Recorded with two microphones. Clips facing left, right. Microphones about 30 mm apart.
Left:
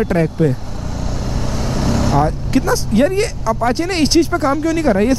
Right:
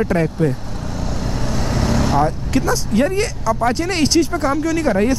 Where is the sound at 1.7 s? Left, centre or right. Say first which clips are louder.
Left 1 dB; centre.